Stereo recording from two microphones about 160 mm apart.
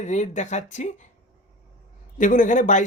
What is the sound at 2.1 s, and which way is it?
Speech, 55° left (ahead or behind).